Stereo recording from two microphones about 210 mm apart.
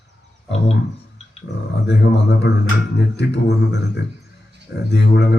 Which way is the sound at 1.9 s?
55° left (ahead or behind).